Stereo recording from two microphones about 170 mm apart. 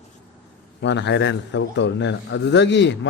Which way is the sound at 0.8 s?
90° left.